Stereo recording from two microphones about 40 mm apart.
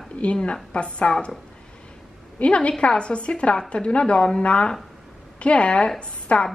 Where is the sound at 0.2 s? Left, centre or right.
Left.